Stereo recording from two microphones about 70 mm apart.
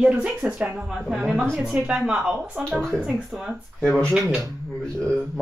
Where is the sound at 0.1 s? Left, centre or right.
Centre.